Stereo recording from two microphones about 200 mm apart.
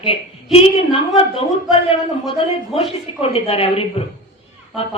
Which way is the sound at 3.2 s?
30° left (ahead or behind).